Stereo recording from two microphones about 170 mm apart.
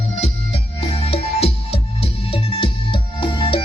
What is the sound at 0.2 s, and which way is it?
Music, 35° left (ahead or behind).